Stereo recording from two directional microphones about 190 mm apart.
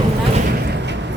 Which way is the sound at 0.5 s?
60° right (ahead or behind).